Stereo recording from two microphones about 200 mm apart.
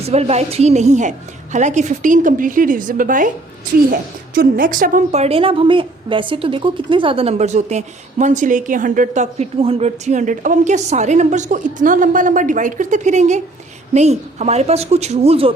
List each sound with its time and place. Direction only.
0.1 s a woman's voice: 30° right (ahead or behind)
4.4 s a woman's voice: 45° right (ahead or behind)